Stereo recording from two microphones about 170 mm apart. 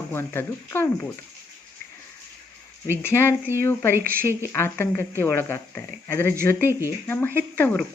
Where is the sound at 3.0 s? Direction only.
15° left (ahead or behind).